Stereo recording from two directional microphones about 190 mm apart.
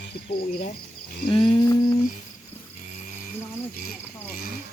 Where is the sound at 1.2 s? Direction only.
25° left (ahead or behind).